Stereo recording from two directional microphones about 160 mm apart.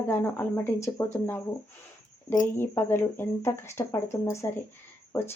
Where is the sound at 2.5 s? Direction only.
15° left (ahead or behind).